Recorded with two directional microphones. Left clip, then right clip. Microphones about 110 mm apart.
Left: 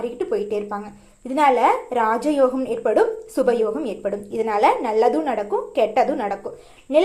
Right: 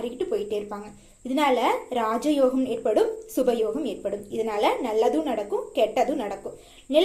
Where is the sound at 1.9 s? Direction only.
5° right (ahead or behind).